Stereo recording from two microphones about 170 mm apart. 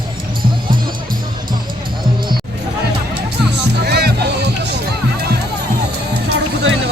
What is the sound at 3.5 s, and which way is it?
Music, 80° right.